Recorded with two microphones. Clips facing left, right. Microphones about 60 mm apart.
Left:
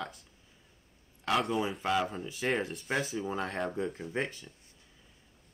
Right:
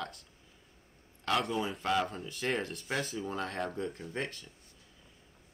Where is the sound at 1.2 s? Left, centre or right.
Centre.